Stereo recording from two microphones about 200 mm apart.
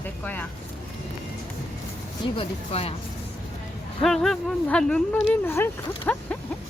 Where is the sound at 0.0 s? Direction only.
10° left (ahead or behind).